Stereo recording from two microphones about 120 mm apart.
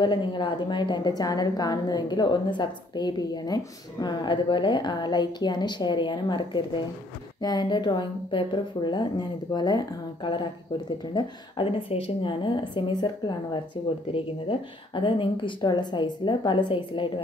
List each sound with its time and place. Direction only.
0.0 s a woman's voice: 40° left (ahead or behind)